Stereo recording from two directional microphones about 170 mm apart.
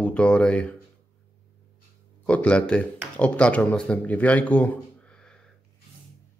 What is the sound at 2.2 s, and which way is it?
Speech, 5° left (ahead or behind).